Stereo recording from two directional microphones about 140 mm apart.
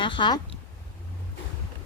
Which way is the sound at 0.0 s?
35° left (ahead or behind).